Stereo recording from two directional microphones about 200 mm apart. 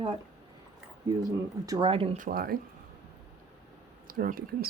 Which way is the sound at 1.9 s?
30° right (ahead or behind).